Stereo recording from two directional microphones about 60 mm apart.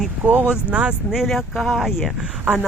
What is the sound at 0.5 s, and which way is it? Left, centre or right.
Speech, right.